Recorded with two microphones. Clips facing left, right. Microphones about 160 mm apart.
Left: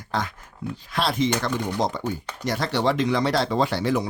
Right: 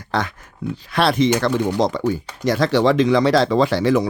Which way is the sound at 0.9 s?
75° right (ahead or behind).